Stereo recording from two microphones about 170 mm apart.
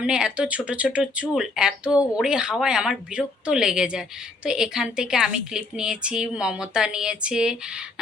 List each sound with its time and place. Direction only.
0.0 s a woman's voice: 5° right (ahead or behind)